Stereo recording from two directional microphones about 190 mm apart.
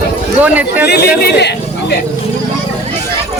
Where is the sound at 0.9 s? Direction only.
60° left (ahead or behind).